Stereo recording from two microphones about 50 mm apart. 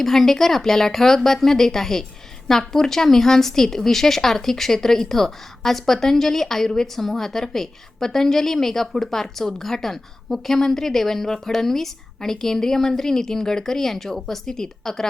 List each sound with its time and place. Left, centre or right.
0.0 s a woman's voice: centre